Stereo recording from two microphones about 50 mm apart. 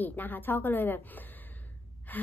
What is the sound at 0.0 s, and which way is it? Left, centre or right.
A woman's voice, left.